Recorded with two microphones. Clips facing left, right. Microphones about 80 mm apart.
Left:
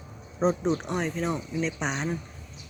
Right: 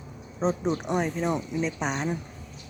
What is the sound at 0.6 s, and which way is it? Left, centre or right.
Speech, centre.